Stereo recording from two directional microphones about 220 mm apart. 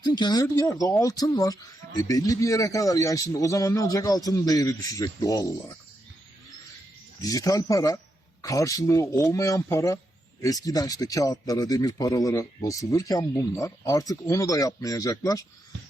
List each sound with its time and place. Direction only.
0.0 s a man's voice: 20° left (ahead or behind)
7.2 s a man's voice: 15° left (ahead or behind)